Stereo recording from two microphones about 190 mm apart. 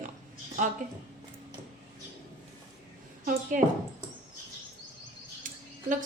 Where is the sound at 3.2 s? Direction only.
45° right (ahead or behind).